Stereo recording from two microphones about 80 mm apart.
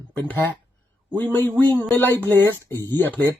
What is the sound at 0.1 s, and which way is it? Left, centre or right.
Speech, left.